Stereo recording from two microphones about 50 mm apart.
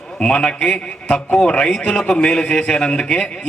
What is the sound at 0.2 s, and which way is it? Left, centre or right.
A man's voice, centre.